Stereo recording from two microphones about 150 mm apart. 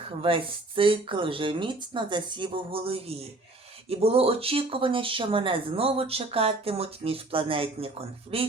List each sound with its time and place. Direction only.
0.2 s speech: 35° right (ahead or behind)